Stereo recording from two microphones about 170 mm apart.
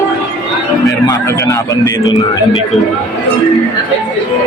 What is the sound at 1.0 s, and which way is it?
A man's voice, 20° left (ahead or behind).